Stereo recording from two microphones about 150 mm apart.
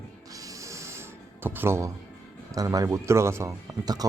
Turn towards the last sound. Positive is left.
turn(degrees=-25)  # may be behind; listen again after turning